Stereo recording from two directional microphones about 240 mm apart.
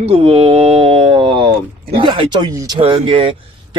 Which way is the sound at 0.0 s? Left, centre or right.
Right.